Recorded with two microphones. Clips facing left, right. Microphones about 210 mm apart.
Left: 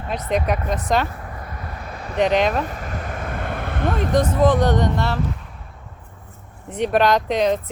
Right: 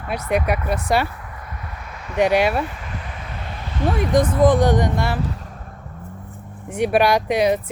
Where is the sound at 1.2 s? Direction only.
35° left (ahead or behind).